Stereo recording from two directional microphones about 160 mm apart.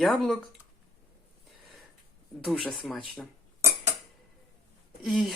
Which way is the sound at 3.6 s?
15° right (ahead or behind).